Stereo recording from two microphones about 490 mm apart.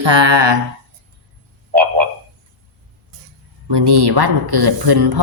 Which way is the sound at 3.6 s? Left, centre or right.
Right.